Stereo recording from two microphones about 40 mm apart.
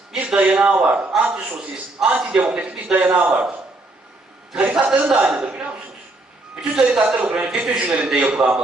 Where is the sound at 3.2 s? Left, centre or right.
Right.